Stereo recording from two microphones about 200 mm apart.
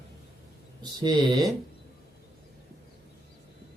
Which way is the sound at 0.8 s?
20° right (ahead or behind).